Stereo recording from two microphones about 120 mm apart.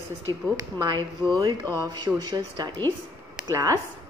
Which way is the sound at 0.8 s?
40° right (ahead or behind).